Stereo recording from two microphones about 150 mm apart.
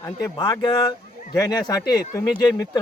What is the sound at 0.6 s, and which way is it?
Speech, 30° left (ahead or behind).